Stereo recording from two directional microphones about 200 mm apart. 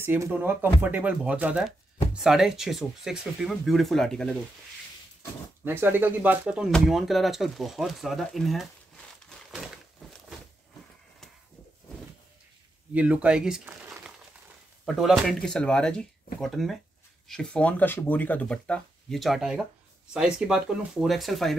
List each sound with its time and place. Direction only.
0.0 s speech: 10° right (ahead or behind)
5.7 s speech: 10° right (ahead or behind)
12.9 s speech: 5° right (ahead or behind)
15.0 s speech: centre (ahead or behind)